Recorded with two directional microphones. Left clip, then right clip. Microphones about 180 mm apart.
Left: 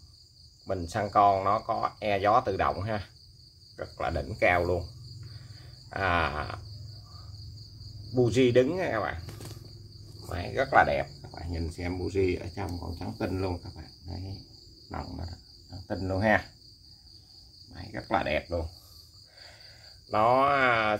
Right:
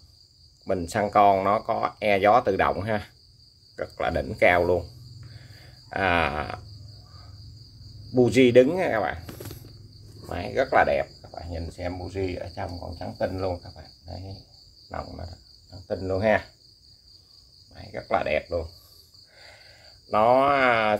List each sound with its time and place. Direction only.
0.7 s speech: 40° right (ahead or behind)
5.9 s speech: 30° right (ahead or behind)
8.1 s speech: 35° right (ahead or behind)
10.2 s speech: 25° right (ahead or behind); by 16.4 s 5° left (ahead or behind)
17.7 s speech: 5° left (ahead or behind)
19.4 s a sound: 25° right (ahead or behind)